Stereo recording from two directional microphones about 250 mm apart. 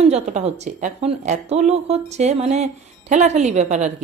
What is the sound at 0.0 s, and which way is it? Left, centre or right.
A woman's voice, right.